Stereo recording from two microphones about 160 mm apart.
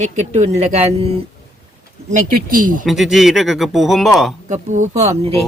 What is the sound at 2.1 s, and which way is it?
Speech, 55° right (ahead or behind).